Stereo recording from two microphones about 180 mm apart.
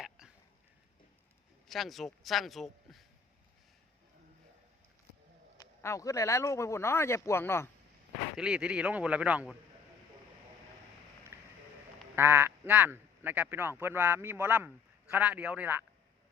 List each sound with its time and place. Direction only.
1.6 s speech: centre (ahead or behind)
5.5 s speech: 15° left (ahead or behind)
8.4 s speech: 5° right (ahead or behind)
11.3 s a sound: 15° right (ahead or behind)
12.1 s speech: 15° right (ahead or behind)